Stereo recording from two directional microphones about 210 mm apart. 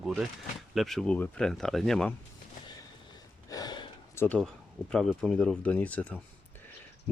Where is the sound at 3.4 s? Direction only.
20° left (ahead or behind).